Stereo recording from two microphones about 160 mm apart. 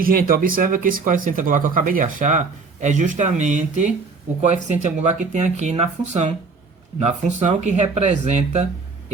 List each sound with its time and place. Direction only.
0.0 s speech: 65° right (ahead or behind); by 8.6 s 45° right (ahead or behind)